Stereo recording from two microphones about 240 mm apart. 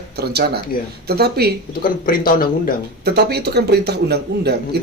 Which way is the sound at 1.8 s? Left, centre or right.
Left.